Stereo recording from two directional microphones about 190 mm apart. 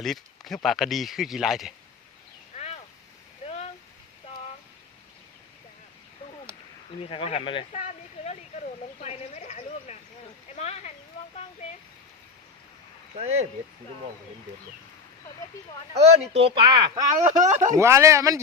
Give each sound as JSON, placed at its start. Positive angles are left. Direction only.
{"t": 0.0, "sound": "speech", "side_deg": 0}
{"t": 7.0, "sound": "speech", "side_deg": 30}
{"t": 9.0, "sound": "a sound", "side_deg": 40}
{"t": 13.1, "sound": "speech", "side_deg": -35}
{"t": 16.0, "sound": "speech", "side_deg": -30}
{"t": 17.4, "sound": "speech", "side_deg": -40}
{"t": 17.7, "sound": "speech", "side_deg": -15}